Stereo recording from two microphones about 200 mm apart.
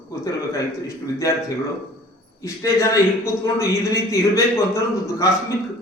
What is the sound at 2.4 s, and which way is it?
A man's voice, 15° left (ahead or behind).